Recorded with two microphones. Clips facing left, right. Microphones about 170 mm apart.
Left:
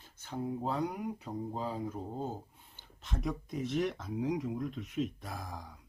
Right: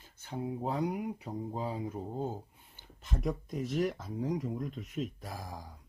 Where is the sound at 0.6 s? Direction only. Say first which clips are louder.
Right 3 dB; 10° right (ahead or behind).